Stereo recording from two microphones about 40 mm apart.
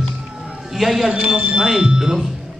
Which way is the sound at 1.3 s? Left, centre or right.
Right.